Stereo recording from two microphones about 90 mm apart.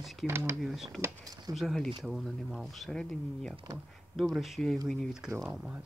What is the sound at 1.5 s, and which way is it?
Speech, centre (ahead or behind).